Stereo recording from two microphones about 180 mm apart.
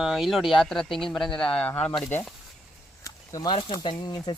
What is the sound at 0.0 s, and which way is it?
Speech, centre (ahead or behind).